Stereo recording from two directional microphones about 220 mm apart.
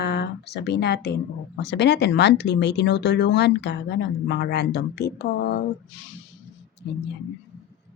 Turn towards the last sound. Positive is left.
turn(degrees=50)  # may be behind; listen again after turning